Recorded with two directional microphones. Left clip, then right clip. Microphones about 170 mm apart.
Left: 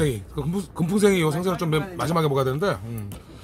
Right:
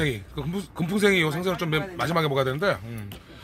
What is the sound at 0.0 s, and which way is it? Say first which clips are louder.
Speech: left 2 dB; centre (ahead or behind).